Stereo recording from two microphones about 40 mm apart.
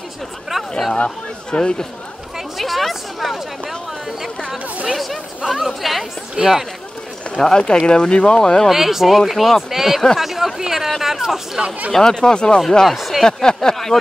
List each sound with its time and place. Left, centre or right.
0.9 s speech: left
1.6 s speech: centre
2.5 s a sound: centre
4.9 s speech: centre
6.3 s speech: centre
7.4 s speech: centre
8.6 s speech: centre
11.9 s speech: centre
12.8 s speech: centre
13.2 s speech: centre